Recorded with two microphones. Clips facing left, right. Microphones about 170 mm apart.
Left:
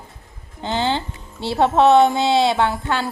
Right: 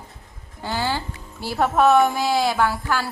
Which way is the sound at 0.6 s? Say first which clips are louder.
Left 4 dB; 20° left (ahead or behind).